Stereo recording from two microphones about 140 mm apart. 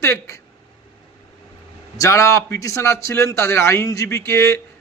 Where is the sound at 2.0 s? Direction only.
20° left (ahead or behind).